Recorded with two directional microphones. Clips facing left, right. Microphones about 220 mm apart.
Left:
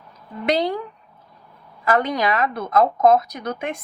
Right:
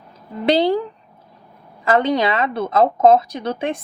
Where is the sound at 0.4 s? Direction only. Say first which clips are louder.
Right 5 dB; 30° right (ahead or behind).